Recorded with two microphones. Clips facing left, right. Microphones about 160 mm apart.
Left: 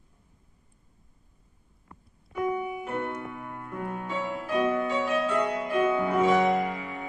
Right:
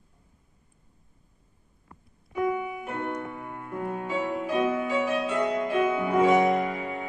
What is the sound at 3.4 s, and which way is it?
Music, 10° right (ahead or behind).